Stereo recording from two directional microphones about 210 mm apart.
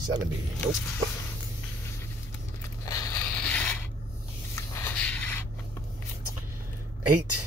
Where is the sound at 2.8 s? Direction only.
15° left (ahead or behind).